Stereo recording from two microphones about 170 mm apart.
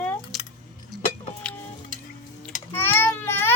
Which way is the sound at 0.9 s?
Centre (ahead or behind).